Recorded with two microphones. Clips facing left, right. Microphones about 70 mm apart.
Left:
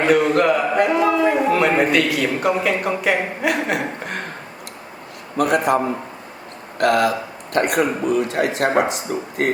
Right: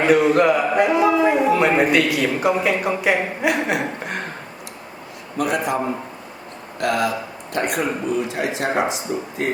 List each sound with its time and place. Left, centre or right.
0.0 s a man's voice: centre
5.4 s a man's voice: left